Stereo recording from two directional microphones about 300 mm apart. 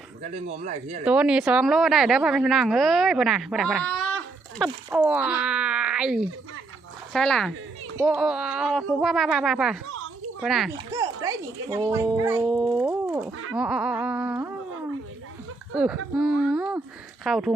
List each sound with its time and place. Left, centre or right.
0.2 s speech: right
1.0 s a woman's voice: centre
15.7 s a woman's voice: centre